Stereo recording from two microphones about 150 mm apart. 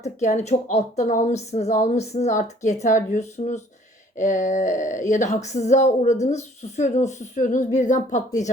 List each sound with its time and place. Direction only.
0.0 s speech: 50° left (ahead or behind)